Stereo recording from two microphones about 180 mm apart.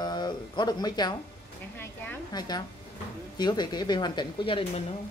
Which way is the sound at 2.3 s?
20° left (ahead or behind).